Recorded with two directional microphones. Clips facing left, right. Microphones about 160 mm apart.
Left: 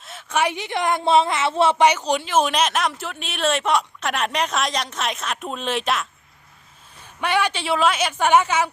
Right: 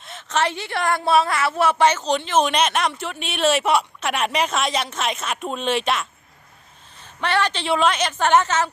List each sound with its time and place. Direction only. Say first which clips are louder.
0.0 s a woman's voice: even; 5° left (ahead or behind); by 1.7 s 25° left (ahead or behind)
1.8 s speech: left 1 dB; 15° left (ahead or behind)
7.0 s a woman's voice: even; 10° left (ahead or behind)